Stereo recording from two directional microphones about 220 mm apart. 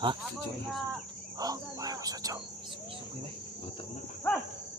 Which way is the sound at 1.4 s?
15° right (ahead or behind).